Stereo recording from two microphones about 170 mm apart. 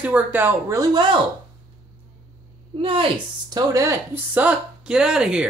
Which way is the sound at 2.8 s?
30° right (ahead or behind).